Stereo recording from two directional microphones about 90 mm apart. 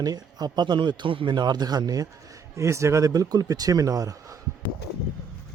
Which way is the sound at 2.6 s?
35° right (ahead or behind).